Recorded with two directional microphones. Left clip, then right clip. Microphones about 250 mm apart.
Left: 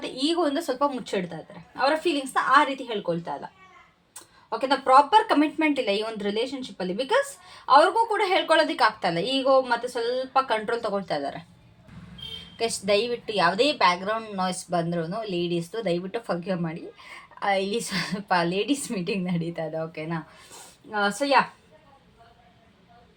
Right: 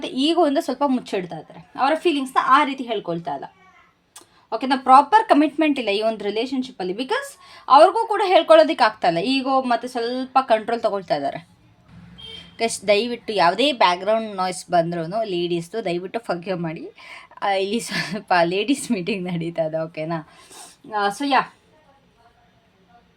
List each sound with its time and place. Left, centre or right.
0.0 s a woman's voice: right
12.5 s a woman's voice: right